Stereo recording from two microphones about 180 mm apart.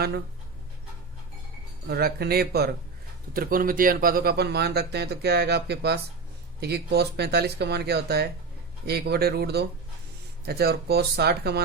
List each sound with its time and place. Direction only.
1.9 s speech: 60° right (ahead or behind)